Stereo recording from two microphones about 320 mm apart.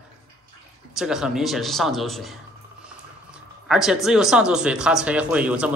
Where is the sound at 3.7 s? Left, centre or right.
Centre.